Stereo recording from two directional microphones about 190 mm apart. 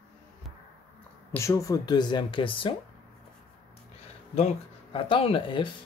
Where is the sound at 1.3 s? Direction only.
15° left (ahead or behind).